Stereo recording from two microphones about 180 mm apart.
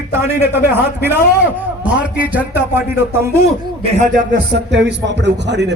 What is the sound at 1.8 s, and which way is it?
Speech, 10° right (ahead or behind).